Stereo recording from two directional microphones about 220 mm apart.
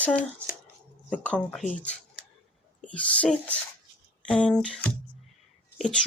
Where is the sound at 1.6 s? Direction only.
35° left (ahead or behind).